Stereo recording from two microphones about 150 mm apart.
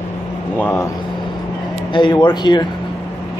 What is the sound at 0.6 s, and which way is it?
Speech, 15° left (ahead or behind).